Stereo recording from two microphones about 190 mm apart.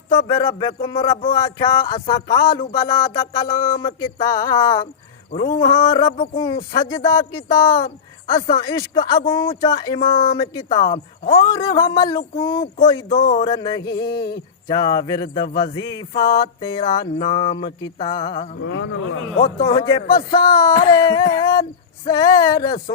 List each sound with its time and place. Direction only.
0.3 s speech: 20° left (ahead or behind)
6.1 s speech: 35° left (ahead or behind)
6.7 s speech: 15° left (ahead or behind)
18.6 s speech: 75° left (ahead or behind)
19.6 s speech: 20° left (ahead or behind)